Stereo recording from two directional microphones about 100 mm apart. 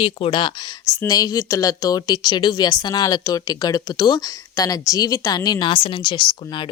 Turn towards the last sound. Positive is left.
turn(degrees=55)  # may be behind; listen again after turning